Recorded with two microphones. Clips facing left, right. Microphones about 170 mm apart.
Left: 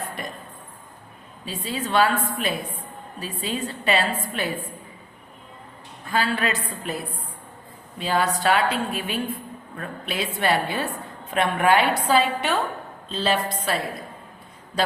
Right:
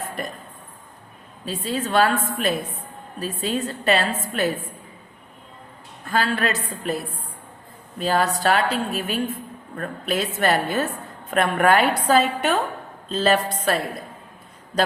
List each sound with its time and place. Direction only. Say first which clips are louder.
1.5 s a woman's voice: right 3 dB; 40° right (ahead or behind)
6.1 s a woman's voice: right 1 dB; 40° right (ahead or behind)